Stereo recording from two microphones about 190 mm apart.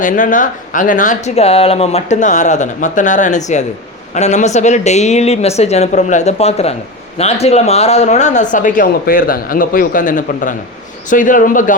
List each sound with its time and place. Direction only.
0.0 s a man's voice: 45° left (ahead or behind)